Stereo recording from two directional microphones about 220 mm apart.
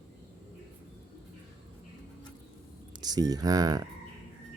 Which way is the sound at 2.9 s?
15° right (ahead or behind).